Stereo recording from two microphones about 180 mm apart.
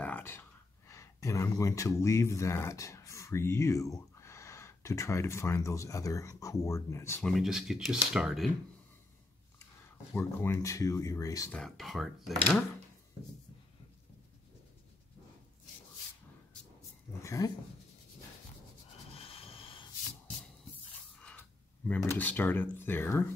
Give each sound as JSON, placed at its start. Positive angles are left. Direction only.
{"t": 0.0, "sound": "speech", "side_deg": 10}
{"t": 7.2, "sound": "speech", "side_deg": 0}
{"t": 10.1, "sound": "speech", "side_deg": 15}
{"t": 11.5, "sound": "speech", "side_deg": 0}
{"t": 17.2, "sound": "dog", "side_deg": 15}
{"t": 19.1, "sound": "vehicle", "side_deg": 30}
{"t": 21.2, "sound": "speech", "side_deg": 5}